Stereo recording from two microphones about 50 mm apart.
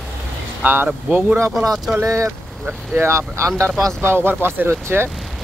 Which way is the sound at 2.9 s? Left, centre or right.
Right.